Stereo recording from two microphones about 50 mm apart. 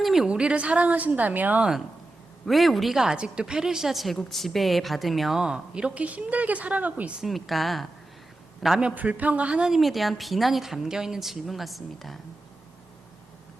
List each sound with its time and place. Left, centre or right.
0.0 s a sound: centre
0.3 s a woman's voice: right
2.5 s a woman's voice: centre
5.4 s a woman's voice: centre; by 7.1 s right
7.2 s a woman's voice: centre
9.0 s a woman's voice: right
9.7 s a woman's voice: centre